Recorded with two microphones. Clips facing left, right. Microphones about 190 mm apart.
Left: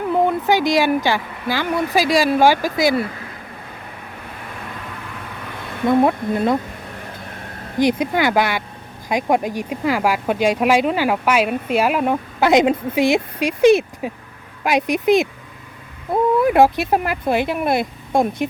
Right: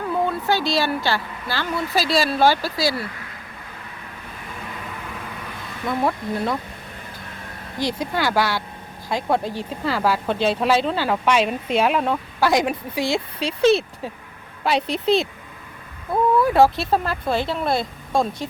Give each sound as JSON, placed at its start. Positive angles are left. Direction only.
{"t": 0.1, "sound": "a woman's voice", "side_deg": 15}
{"t": 5.8, "sound": "speech", "side_deg": 20}
{"t": 7.8, "sound": "speech", "side_deg": 20}
{"t": 16.4, "sound": "speech", "side_deg": 15}